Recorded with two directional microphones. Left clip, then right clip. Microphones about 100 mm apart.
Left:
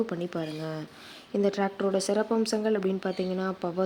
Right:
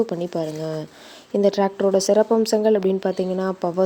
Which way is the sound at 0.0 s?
45° right (ahead or behind).